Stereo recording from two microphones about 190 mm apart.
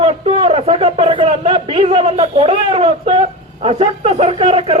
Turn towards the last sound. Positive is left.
turn(degrees=-30)  # may be behind; listen again after turning